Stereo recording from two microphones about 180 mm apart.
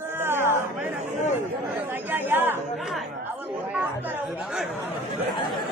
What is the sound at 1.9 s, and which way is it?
Speech, 10° right (ahead or behind).